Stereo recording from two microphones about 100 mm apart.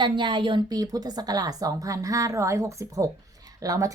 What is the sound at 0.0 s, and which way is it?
A woman's voice, 50° right (ahead or behind).